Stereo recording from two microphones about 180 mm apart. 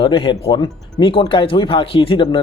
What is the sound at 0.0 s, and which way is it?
Speech, 30° left (ahead or behind).